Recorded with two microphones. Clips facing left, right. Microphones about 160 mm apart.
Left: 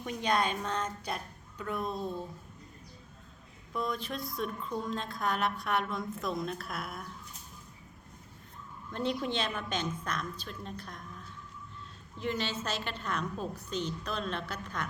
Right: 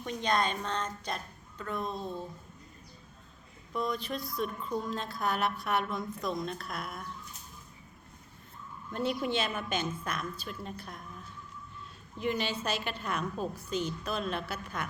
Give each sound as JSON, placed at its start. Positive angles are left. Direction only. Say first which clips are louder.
{"t": 0.0, "sound": "a woman's voice", "louder": "even", "side_deg": 10}
{"t": 3.7, "sound": "a woman's voice", "louder": "right 1 dB", "side_deg": 0}
{"t": 8.9, "sound": "a woman's voice", "louder": "right 1 dB", "side_deg": -5}
{"t": 12.2, "sound": "a woman's voice", "louder": "right 2 dB", "side_deg": -15}